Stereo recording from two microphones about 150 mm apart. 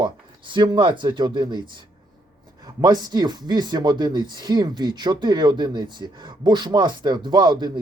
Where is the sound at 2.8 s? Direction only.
25° right (ahead or behind).